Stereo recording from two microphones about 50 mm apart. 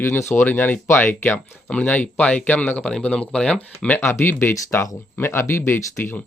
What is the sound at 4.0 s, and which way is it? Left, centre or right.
Speech, left.